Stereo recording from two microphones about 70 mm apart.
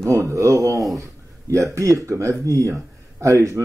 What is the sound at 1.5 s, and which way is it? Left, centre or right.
Speech, right.